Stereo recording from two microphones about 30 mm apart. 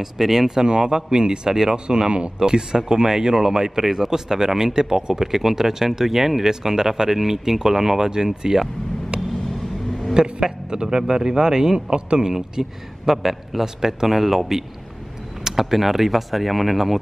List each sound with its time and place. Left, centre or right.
0.0 s speech: centre
0.7 s a man's voice: right
2.0 s speech: right
2.3 s a man's voice: right
9.1 s vehicle: right
10.1 s a man's voice: right
12.5 s a man's voice: centre
14.0 s speech: centre